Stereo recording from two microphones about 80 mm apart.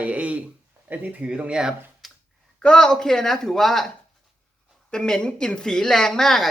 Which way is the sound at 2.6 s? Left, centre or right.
Centre.